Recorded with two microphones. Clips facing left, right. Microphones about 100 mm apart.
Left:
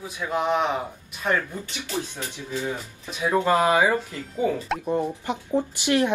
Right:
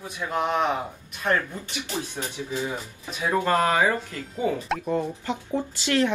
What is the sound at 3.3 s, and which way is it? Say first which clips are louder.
Speech: left 2 dB; 15° left (ahead or behind).